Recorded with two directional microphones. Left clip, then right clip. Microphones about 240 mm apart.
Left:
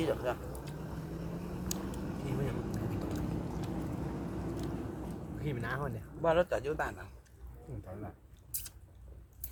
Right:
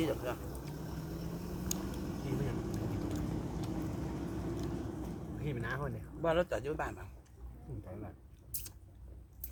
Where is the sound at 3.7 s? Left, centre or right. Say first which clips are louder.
Left 1 dB; right.